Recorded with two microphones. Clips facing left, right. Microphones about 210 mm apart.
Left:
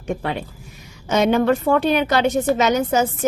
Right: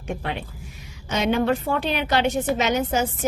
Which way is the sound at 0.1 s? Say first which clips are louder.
Left 5 dB; 40° left (ahead or behind).